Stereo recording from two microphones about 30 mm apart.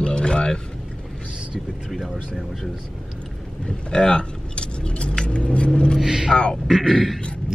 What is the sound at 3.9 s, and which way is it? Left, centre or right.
Speech, left.